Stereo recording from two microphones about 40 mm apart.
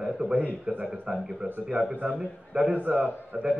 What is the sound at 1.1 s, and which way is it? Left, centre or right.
Speech, right.